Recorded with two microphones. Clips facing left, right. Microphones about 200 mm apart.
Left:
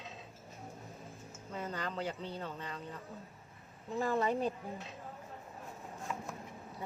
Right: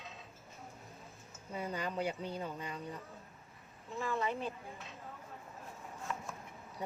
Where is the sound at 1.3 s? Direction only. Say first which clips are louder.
Right 1 dB; 10° right (ahead or behind).